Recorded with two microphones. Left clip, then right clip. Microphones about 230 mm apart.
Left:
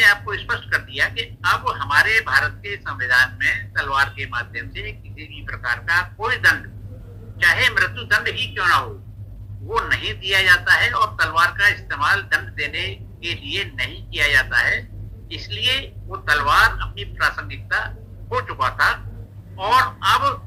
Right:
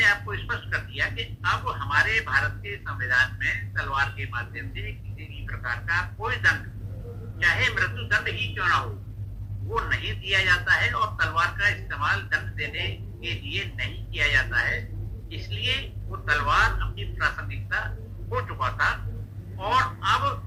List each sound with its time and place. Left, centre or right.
0.0 s a man's voice: left